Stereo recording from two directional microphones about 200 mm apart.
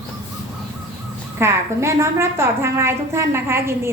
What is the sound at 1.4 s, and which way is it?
A woman's voice, 15° right (ahead or behind).